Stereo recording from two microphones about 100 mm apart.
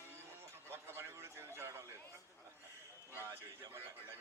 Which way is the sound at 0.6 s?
25° right (ahead or behind).